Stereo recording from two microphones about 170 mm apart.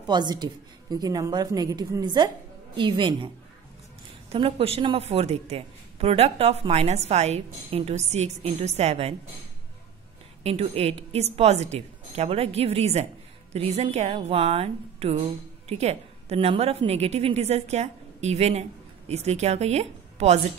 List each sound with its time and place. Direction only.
0.0 s a woman's voice: 25° right (ahead or behind)
4.3 s speech: 35° right (ahead or behind)
10.4 s a woman's voice: 35° right (ahead or behind)